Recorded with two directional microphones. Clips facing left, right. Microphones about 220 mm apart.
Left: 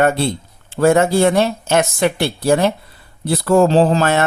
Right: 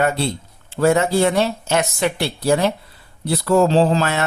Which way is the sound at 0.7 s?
50° left (ahead or behind).